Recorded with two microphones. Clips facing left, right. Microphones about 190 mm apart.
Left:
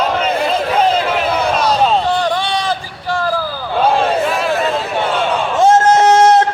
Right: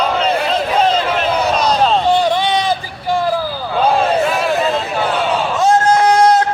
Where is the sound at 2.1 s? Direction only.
10° right (ahead or behind).